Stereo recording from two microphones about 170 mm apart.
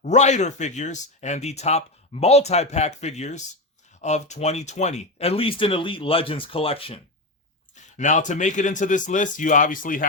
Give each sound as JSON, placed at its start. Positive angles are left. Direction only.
{"t": 0.0, "sound": "speech", "side_deg": 45}
{"t": 7.9, "sound": "speech", "side_deg": 45}